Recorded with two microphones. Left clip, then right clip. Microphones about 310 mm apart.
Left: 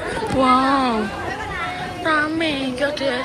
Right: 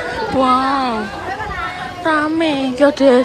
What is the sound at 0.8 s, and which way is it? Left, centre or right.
Speech, centre.